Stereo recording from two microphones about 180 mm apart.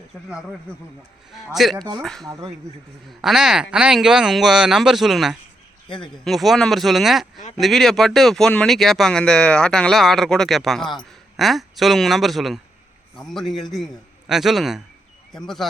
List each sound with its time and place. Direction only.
1.6 s speech: centre (ahead or behind)
2.2 s speech: 20° right (ahead or behind)
3.2 s speech: centre (ahead or behind)